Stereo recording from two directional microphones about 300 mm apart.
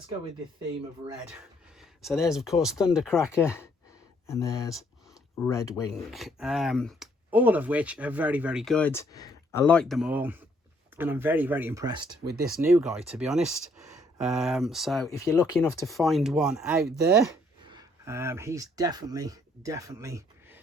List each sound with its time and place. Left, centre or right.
1.8 s speech: centre
4.3 s speech: centre
5.9 s speech: centre
12.2 s speech: right
12.7 s speech: centre
17.2 s speech: centre